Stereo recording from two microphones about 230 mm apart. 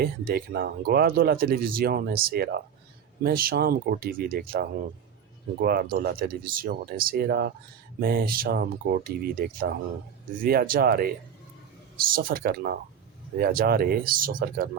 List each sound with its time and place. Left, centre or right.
0.0 s speech: right
12.1 s speech: right